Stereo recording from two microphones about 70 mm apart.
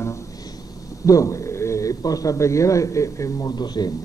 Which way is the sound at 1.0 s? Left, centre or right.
Left.